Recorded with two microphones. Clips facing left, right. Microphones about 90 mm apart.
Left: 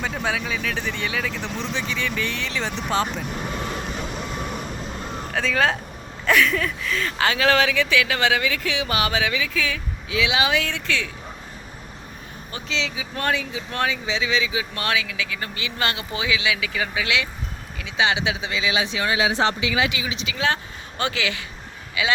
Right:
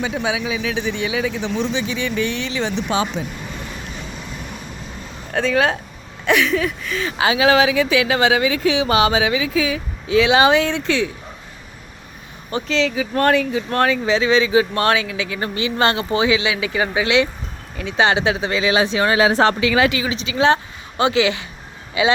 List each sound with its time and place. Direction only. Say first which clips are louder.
0.0 s speech: right 4 dB; 5° right (ahead or behind)
5.3 s speech: right 4 dB; 5° right (ahead or behind); by 9.8 s 20° right (ahead or behind)
10.1 s speech: right 8 dB; 40° right (ahead or behind); by 11.1 s 20° right (ahead or behind)
12.6 s speech: right 8 dB; 50° right (ahead or behind); by 17.2 s 30° right (ahead or behind)
17.7 s speech: right 5 dB; 40° right (ahead or behind)